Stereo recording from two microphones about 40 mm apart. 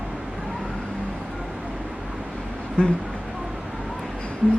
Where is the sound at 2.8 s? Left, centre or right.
Left.